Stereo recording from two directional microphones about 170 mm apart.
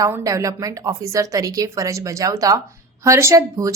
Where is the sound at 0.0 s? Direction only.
15° right (ahead or behind).